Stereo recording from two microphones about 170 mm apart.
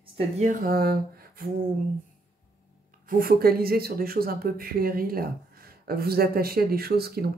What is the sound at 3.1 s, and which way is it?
Speech, 60° right (ahead or behind).